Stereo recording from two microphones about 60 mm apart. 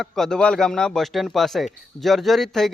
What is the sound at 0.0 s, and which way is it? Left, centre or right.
Speech, centre.